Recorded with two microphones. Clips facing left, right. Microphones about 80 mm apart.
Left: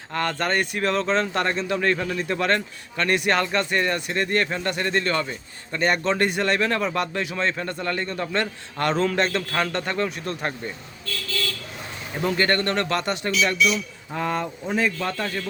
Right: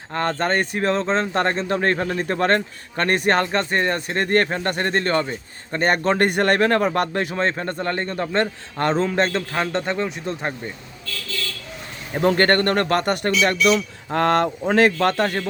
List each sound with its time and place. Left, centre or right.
0.1 s speech: right
9.7 s speech: right
12.1 s speech: right
13.7 s a man's voice: right